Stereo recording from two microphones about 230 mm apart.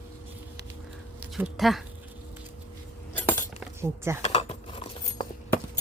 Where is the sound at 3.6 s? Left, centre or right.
Centre.